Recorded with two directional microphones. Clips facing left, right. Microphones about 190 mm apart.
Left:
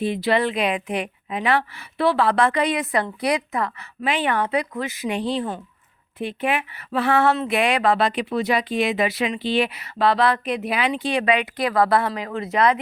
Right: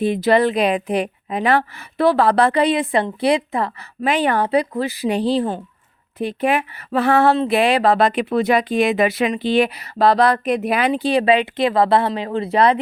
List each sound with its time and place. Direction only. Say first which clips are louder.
0.0 s speech: right 5 dB; 45° right (ahead or behind); by 3.7 s 30° right (ahead or behind)
4.0 s speech: right 4 dB; 40° right (ahead or behind)